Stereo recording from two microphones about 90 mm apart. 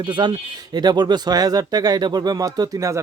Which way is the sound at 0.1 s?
60° right (ahead or behind).